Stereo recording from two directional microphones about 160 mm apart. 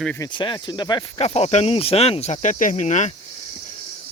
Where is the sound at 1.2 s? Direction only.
40° left (ahead or behind).